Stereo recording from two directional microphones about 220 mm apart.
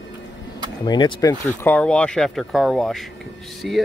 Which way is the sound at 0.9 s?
20° left (ahead or behind).